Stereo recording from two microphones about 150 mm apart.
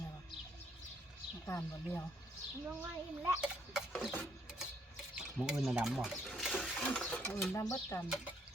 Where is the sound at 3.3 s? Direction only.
5° right (ahead or behind).